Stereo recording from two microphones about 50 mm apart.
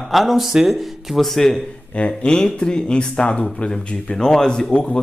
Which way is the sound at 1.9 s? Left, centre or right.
Left.